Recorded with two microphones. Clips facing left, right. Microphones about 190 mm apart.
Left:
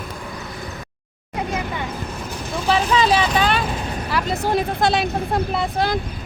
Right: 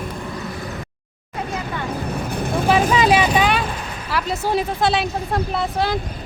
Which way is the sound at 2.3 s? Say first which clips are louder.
Right 3 dB; 60° right (ahead or behind).